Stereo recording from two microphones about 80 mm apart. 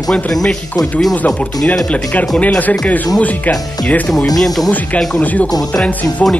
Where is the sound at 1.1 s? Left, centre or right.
Centre.